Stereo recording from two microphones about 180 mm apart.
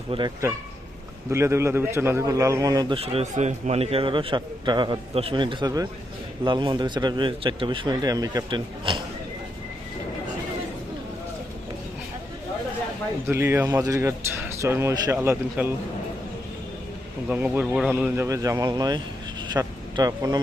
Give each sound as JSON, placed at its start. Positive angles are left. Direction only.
{"t": 0.1, "sound": "a man's voice", "side_deg": -25}
{"t": 1.3, "sound": "speech", "side_deg": -15}
{"t": 3.0, "sound": "a man's voice", "side_deg": -35}
{"t": 13.2, "sound": "speech", "side_deg": -15}
{"t": 17.2, "sound": "speech", "side_deg": -10}
{"t": 19.5, "sound": "vehicle", "side_deg": -20}